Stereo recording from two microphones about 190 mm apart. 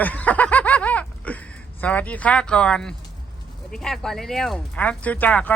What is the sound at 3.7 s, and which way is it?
Speech, centre (ahead or behind).